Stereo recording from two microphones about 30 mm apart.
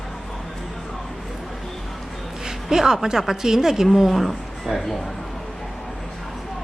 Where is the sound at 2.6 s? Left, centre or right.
Centre.